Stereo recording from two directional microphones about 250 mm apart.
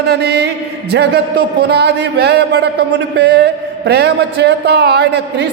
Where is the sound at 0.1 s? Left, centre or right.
Right.